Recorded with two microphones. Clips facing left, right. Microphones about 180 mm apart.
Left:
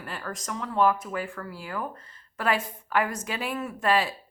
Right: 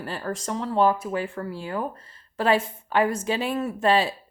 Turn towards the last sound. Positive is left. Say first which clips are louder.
# right 4 dB
turn(degrees=-25)  # may be behind; listen again after turning